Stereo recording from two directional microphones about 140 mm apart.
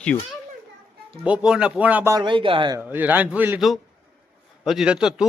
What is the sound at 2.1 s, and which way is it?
Speech, 35° right (ahead or behind).